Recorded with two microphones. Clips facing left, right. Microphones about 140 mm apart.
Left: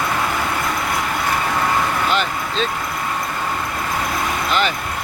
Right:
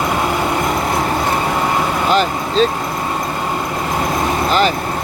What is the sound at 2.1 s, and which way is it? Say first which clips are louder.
Vehicle: right 6 dB; 35° right (ahead or behind).